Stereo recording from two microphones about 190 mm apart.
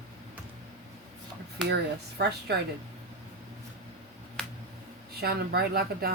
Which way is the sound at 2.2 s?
60° right (ahead or behind).